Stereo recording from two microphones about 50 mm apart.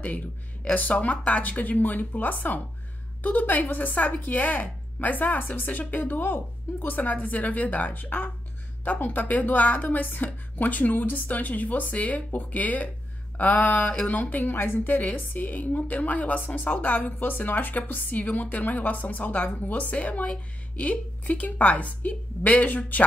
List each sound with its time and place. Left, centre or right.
0.7 s a woman's voice: left